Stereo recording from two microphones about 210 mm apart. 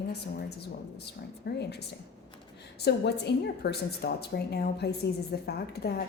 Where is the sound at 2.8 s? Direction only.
50° left (ahead or behind).